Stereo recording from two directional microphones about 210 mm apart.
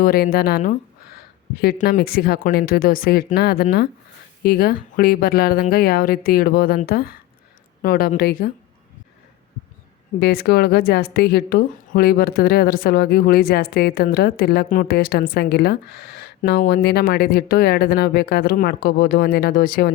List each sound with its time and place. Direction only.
0.0 s a woman's voice: 45° left (ahead or behind)
10.2 s a woman's voice: 50° left (ahead or behind)